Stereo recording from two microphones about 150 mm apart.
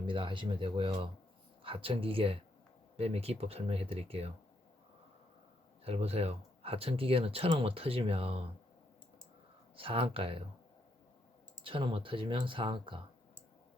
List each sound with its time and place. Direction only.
0.0 s speech: 35° right (ahead or behind)
5.8 s speech: 40° right (ahead or behind)
9.7 s speech: 35° right (ahead or behind)
11.6 s speech: 35° right (ahead or behind)